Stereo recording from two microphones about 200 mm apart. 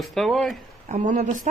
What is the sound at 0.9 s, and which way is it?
Speech, 35° right (ahead or behind).